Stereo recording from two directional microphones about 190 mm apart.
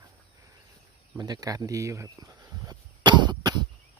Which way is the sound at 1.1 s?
20° right (ahead or behind).